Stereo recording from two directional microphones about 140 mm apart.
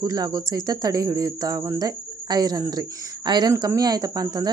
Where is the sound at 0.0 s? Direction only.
30° right (ahead or behind).